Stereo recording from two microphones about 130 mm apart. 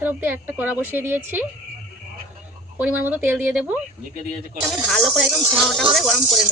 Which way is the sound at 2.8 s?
10° right (ahead or behind).